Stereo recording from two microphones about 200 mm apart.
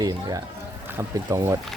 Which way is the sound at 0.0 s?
20° right (ahead or behind).